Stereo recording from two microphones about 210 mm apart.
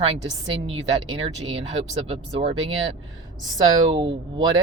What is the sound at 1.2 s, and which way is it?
Speech, 25° right (ahead or behind).